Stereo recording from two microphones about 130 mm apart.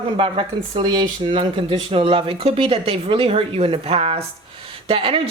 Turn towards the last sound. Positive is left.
turn(degrees=-45)  # may be behind; listen again after turning